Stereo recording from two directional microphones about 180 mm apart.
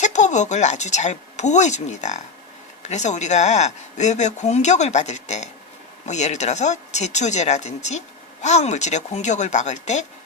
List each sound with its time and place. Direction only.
0.0 s speech: 40° left (ahead or behind)